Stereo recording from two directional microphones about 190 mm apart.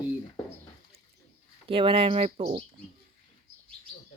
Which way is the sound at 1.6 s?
25° right (ahead or behind).